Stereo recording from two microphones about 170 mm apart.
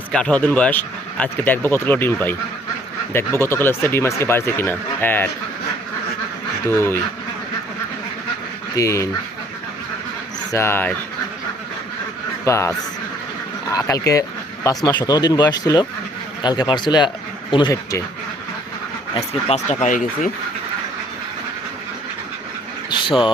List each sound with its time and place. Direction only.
0.1 s speech: 5° left (ahead or behind)
6.7 s speech: 15° left (ahead or behind)
8.7 s speech: 20° left (ahead or behind)
10.5 s speech: 15° left (ahead or behind)
12.5 s speech: 15° left (ahead or behind)
19.1 s speech: 35° left (ahead or behind)
22.9 s a sound: 30° left (ahead or behind)